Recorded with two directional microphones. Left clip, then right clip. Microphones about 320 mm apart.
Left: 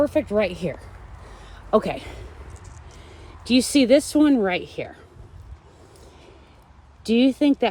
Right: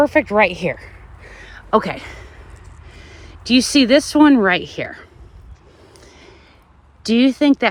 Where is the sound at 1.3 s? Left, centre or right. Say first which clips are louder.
Right 4 dB; centre.